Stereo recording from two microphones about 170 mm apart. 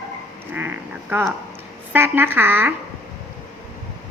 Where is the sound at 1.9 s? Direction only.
15° right (ahead or behind).